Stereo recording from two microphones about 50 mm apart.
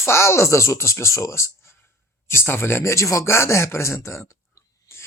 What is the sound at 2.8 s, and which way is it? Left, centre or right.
Speech, left.